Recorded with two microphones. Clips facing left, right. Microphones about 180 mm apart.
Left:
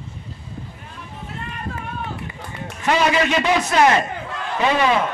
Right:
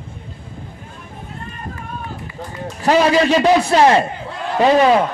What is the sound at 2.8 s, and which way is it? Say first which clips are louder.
A man's voice: right 5 dB; 35° right (ahead or behind).